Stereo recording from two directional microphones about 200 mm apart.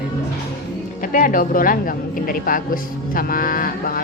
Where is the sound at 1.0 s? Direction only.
45° left (ahead or behind).